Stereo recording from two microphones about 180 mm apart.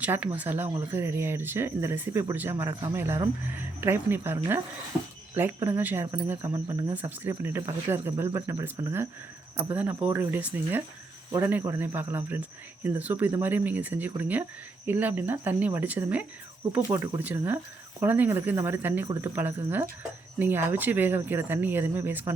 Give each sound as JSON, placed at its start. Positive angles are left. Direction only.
{"t": 0.0, "sound": "speech", "side_deg": -10}